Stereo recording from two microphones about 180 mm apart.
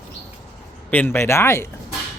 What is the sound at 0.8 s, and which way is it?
Speech, 10° left (ahead or behind).